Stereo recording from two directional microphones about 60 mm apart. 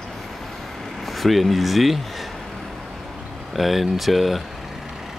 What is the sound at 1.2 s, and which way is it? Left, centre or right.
Speech, centre.